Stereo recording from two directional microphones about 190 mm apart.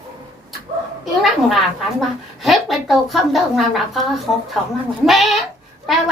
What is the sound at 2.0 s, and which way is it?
A woman's voice, centre (ahead or behind).